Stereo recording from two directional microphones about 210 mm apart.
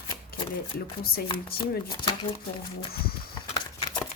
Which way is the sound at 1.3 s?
25° left (ahead or behind).